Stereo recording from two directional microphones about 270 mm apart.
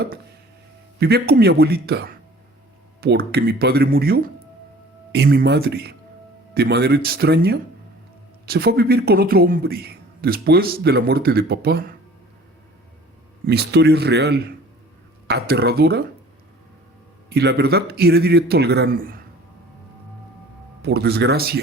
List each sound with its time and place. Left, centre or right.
0.9 s a man's voice: right
13.5 s a man's voice: right
17.2 s a man's voice: right
20.8 s a man's voice: right